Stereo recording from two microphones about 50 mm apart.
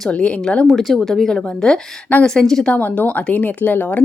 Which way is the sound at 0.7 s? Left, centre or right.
Centre.